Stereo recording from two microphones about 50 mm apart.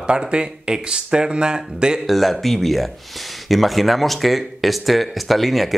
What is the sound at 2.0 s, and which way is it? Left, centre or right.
Speech, centre.